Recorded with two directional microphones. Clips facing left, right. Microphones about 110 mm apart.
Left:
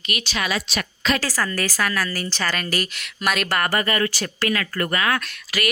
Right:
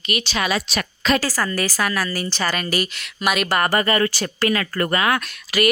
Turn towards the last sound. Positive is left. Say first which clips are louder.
# right 5 dB
turn(degrees=-20)  # may be behind; listen again after turning